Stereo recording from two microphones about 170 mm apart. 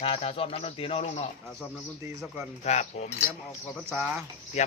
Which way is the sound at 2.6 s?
40° left (ahead or behind).